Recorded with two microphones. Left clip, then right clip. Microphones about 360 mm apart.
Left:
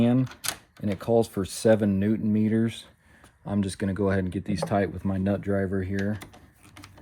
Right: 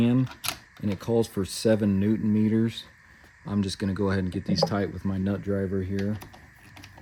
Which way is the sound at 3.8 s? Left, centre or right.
Left.